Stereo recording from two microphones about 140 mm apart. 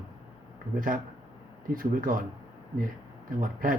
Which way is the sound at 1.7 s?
90° right.